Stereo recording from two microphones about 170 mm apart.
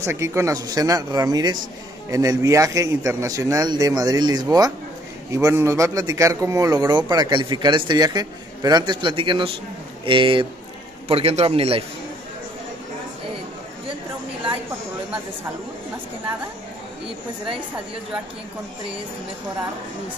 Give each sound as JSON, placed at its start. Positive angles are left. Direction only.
{"t": 0.0, "sound": "a man's voice", "side_deg": -15}